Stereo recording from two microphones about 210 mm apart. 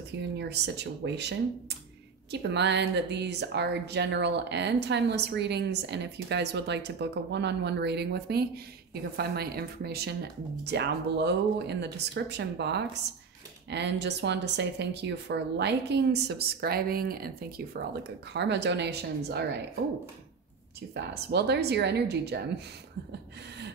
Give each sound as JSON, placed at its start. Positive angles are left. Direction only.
{"t": 0.2, "sound": "speech", "side_deg": -55}
{"t": 2.5, "sound": "speech", "side_deg": -55}
{"t": 20.9, "sound": "speech", "side_deg": -50}